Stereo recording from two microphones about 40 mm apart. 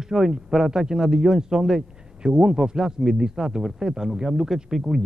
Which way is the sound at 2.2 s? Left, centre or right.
Centre.